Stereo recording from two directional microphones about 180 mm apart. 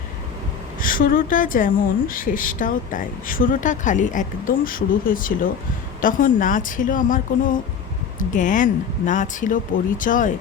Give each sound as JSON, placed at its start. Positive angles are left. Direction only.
{"t": 0.8, "sound": "speech", "side_deg": 50}